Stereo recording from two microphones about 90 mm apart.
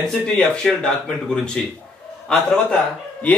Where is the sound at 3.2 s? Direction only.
15° left (ahead or behind).